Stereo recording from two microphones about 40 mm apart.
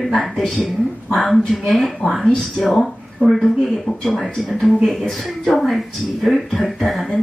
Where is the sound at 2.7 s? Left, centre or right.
Centre.